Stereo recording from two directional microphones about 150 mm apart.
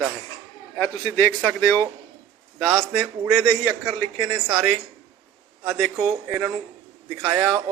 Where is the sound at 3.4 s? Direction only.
20° right (ahead or behind).